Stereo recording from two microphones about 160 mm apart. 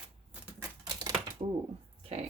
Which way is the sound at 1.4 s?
30° right (ahead or behind).